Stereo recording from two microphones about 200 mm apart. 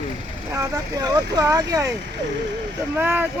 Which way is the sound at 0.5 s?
15° right (ahead or behind).